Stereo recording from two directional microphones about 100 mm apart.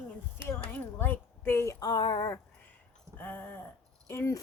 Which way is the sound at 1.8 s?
50° left (ahead or behind).